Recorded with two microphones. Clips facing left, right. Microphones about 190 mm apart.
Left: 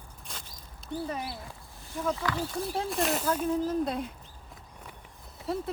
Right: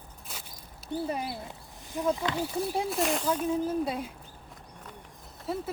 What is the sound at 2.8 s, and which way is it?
Speech, centre (ahead or behind).